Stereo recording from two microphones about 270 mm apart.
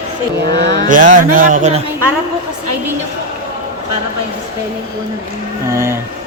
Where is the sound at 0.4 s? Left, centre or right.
Right.